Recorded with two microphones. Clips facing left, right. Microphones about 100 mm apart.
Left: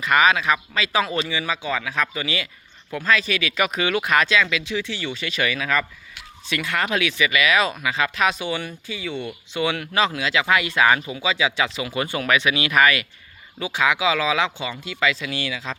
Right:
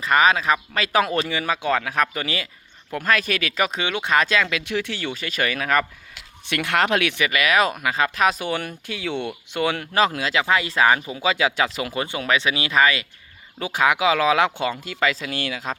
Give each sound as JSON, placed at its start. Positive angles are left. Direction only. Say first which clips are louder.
{"t": 0.0, "sound": "speech", "louder": "even", "side_deg": -35}
{"t": 3.8, "sound": "speech", "louder": "left 2 dB", "side_deg": -25}
{"t": 4.3, "sound": "speech", "louder": "left 1 dB", "side_deg": -45}
{"t": 6.4, "sound": "speech", "louder": "right 3 dB", "side_deg": -65}
{"t": 9.0, "sound": "speech", "louder": "right 3 dB", "side_deg": -75}
{"t": 9.6, "sound": "speech", "louder": "right 1 dB", "side_deg": -40}
{"t": 11.2, "sound": "speech", "louder": "right 1 dB", "side_deg": -45}
{"t": 11.9, "sound": "speech", "louder": "left 2 dB", "side_deg": -25}
{"t": 13.7, "sound": "speech", "louder": "right 2 dB", "side_deg": -45}